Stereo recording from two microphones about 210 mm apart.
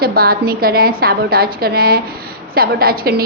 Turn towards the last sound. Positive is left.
turn(degrees=-45)  # may be behind; listen again after turning